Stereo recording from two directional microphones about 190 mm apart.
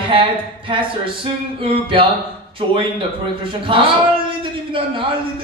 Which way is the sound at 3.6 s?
30° right (ahead or behind).